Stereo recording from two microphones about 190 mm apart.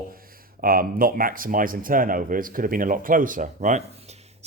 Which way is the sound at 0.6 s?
50° right (ahead or behind).